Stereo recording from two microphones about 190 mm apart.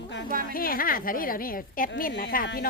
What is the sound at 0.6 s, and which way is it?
A woman's voice, 50° left (ahead or behind).